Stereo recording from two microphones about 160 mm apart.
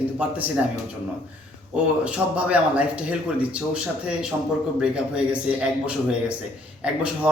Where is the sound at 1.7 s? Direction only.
5° right (ahead or behind).